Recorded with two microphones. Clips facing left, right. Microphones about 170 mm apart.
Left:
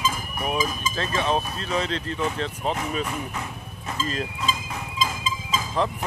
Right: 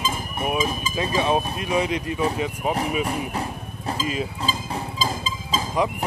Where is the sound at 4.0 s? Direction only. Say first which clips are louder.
Right 1 dB; 10° right (ahead or behind).